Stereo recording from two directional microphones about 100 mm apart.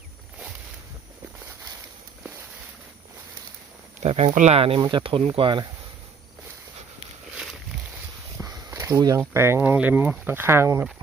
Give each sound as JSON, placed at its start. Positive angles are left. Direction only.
{"t": 4.0, "sound": "speech", "side_deg": -90}
{"t": 4.4, "sound": "speech", "side_deg": -75}
{"t": 4.8, "sound": "speech", "side_deg": -50}
{"t": 8.4, "sound": "a sound", "side_deg": -20}
{"t": 9.0, "sound": "speech", "side_deg": -40}
{"t": 9.3, "sound": "speech", "side_deg": -25}